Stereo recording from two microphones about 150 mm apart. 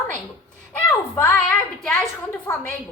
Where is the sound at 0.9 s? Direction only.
15° left (ahead or behind).